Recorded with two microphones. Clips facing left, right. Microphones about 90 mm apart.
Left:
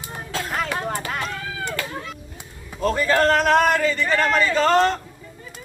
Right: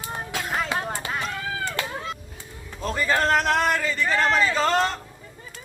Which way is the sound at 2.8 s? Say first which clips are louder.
Left 4 dB; 60° left (ahead or behind).